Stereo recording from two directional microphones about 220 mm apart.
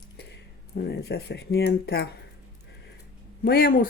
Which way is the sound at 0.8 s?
45° left (ahead or behind).